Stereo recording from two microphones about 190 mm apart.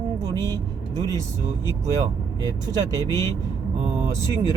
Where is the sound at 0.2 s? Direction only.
20° right (ahead or behind).